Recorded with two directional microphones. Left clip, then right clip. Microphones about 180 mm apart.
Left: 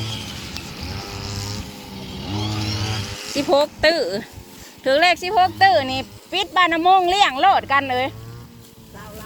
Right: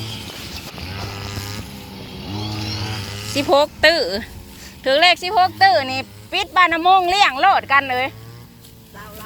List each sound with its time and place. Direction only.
0.0 s a sound: 10° right (ahead or behind)
1.1 s vehicle: 25° right (ahead or behind)
3.5 s speech: 5° right (ahead or behind)
4.8 s speech: 10° left (ahead or behind)